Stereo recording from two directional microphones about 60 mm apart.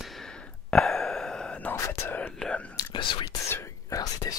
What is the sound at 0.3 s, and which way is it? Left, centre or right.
Sigh, centre.